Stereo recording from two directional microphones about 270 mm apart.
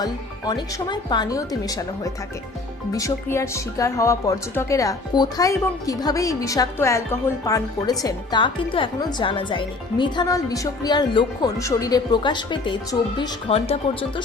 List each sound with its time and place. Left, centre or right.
0.0 s a woman's voice: centre
2.9 s a woman's voice: centre